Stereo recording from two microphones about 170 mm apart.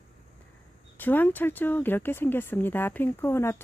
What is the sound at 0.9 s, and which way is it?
Speech, 10° left (ahead or behind).